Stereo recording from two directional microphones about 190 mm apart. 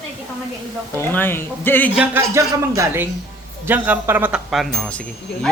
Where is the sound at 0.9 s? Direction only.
10° left (ahead or behind).